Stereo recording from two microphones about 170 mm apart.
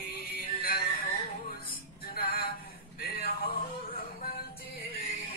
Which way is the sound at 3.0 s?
60° left (ahead or behind).